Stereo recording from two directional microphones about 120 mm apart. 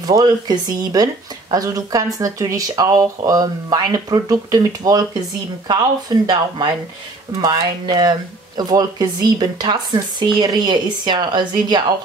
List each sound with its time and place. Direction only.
0.0 s speech: 35° right (ahead or behind)